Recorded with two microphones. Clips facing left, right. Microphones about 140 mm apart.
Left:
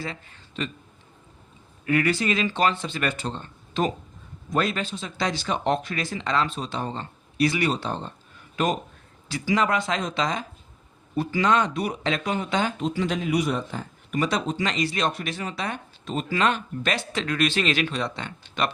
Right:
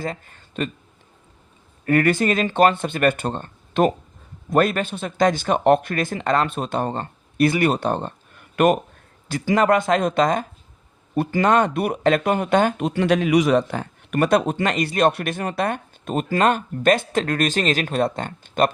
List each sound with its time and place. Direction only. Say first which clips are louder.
0.0 s speech: right 6 dB; 50° right (ahead or behind)
1.8 s speech: right 5 dB; 50° right (ahead or behind)